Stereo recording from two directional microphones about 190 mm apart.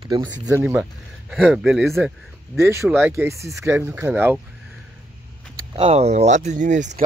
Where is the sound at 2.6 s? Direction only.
15° right (ahead or behind).